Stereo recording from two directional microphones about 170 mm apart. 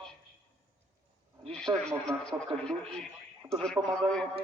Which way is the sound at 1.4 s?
5° left (ahead or behind).